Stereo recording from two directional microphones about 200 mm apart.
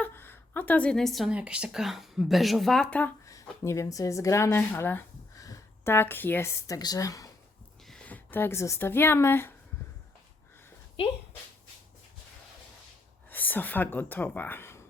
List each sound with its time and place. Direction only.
0.0 s a woman's voice: 10° left (ahead or behind)
7.9 s speech: 5° left (ahead or behind)
11.0 s speech: 30° left (ahead or behind)
13.3 s speech: 10° left (ahead or behind)